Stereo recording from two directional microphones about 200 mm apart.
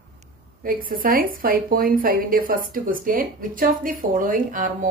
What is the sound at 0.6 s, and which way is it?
A woman's voice, 45° right (ahead or behind).